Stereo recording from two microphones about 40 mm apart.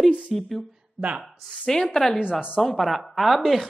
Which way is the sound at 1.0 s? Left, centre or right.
Centre.